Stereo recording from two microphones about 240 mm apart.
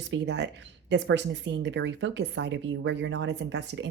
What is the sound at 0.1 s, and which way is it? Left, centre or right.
Speech, right.